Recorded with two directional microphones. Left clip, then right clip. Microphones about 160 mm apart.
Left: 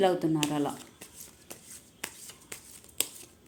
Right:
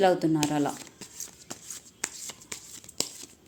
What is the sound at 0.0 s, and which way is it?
A woman's voice, 20° right (ahead or behind).